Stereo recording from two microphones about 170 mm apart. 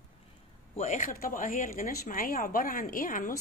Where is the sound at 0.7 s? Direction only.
45° left (ahead or behind).